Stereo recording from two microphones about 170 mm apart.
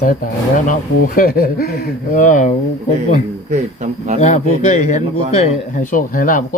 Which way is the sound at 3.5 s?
40° right (ahead or behind).